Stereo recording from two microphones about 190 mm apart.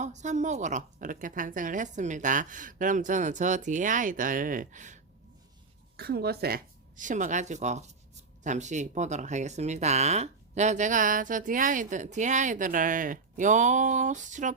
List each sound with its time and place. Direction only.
0.0 s speech: 40° right (ahead or behind)
6.0 s speech: 55° right (ahead or behind); by 14.5 s 40° right (ahead or behind)